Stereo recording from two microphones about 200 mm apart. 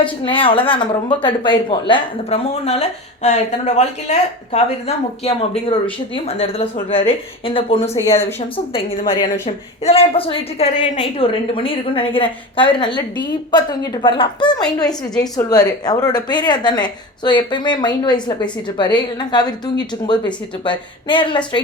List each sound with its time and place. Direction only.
0.0 s a woman's voice: 25° left (ahead or behind)
7.9 s speech: 15° left (ahead or behind)
8.4 s a woman's voice: 25° left (ahead or behind)
9.8 s a woman's voice: 30° left (ahead or behind)